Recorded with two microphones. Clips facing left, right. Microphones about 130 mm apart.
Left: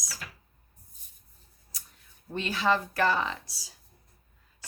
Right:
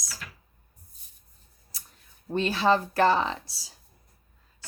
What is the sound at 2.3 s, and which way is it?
Speech, 30° right (ahead or behind).